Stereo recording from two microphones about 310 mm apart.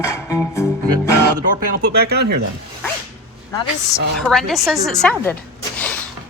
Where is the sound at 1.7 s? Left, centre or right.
Right.